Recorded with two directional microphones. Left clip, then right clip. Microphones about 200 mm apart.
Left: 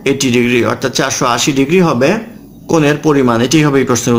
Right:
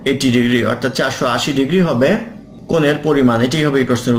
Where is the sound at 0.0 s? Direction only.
45° left (ahead or behind).